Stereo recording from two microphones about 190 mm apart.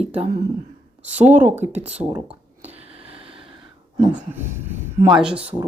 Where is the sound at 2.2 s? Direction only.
30° right (ahead or behind).